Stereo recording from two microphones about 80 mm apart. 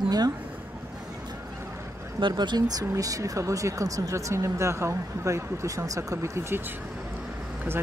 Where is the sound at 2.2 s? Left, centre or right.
Right.